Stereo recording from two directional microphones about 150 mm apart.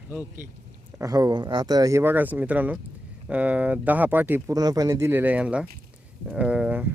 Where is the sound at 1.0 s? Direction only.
25° right (ahead or behind).